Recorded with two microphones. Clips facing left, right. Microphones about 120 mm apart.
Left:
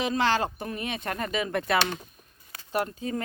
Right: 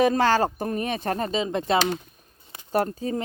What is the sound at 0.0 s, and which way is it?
Speech, 45° right (ahead or behind).